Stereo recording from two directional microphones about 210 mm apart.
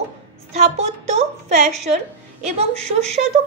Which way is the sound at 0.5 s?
30° right (ahead or behind).